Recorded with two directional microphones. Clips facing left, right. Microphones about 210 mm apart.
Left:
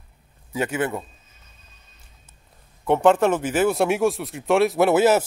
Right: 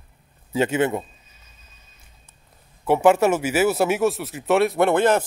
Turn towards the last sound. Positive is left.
turn(degrees=5)  # may be behind; listen again after turning